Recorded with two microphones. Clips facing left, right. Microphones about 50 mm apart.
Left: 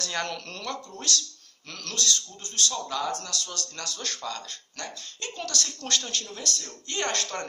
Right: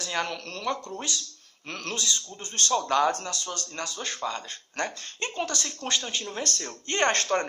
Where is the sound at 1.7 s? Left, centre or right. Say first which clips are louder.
Right 5 dB; right.